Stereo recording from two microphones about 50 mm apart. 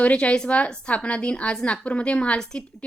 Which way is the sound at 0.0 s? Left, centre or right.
Left.